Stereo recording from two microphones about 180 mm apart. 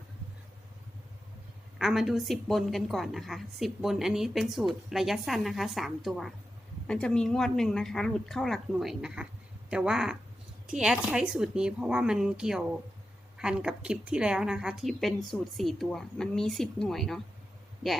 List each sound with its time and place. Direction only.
1.8 s a woman's voice: centre (ahead or behind)